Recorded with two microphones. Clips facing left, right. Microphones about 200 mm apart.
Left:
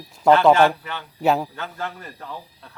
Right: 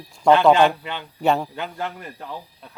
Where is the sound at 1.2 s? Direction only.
5° left (ahead or behind).